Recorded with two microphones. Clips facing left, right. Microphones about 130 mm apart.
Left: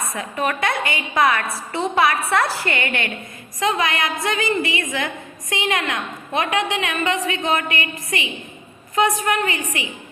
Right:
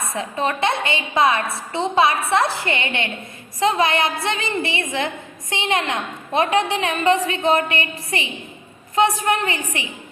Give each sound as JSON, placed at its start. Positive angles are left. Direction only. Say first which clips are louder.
{"t": 0.0, "sound": "a woman's voice", "louder": "right 1 dB", "side_deg": -25}